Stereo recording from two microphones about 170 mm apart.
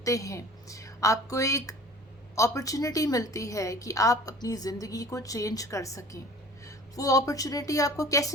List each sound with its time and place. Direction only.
0.0 s a woman's voice: 20° left (ahead or behind)